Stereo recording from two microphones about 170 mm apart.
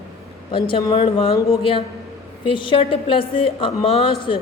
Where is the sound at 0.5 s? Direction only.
30° left (ahead or behind).